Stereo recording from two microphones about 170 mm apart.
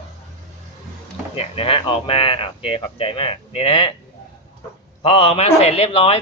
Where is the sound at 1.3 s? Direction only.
35° left (ahead or behind).